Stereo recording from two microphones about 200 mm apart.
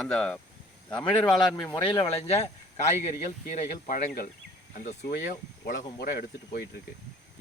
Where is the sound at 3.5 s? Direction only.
45° left (ahead or behind).